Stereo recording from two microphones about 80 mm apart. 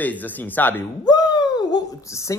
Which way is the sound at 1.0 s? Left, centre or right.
Left.